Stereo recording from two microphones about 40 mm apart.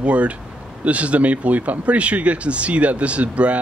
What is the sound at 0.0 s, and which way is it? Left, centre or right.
Speech, right.